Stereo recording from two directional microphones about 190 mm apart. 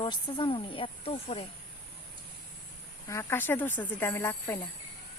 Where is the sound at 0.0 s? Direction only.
25° left (ahead or behind).